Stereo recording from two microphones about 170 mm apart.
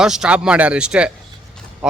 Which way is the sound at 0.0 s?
5° right (ahead or behind).